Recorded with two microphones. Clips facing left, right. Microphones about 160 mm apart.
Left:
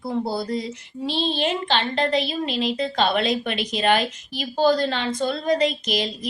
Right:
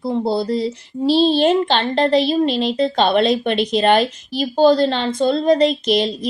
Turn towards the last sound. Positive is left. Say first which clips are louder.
# right 8 dB
turn(degrees=-30)  # may be behind; listen again after turning